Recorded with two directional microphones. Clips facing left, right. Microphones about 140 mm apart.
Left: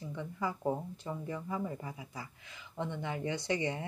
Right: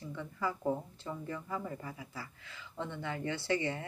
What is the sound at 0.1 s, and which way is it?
Speech, 20° left (ahead or behind).